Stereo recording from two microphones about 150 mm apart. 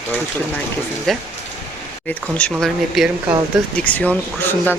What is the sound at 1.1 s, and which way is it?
Speech, centre (ahead or behind).